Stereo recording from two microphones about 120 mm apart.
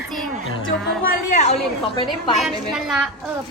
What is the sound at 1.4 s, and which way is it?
Speech, 65° left (ahead or behind).